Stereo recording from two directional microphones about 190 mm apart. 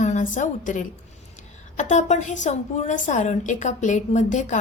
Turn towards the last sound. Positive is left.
turn(degrees=40)  # may be behind; listen again after turning